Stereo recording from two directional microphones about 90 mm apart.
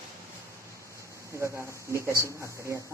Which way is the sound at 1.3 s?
30° right (ahead or behind).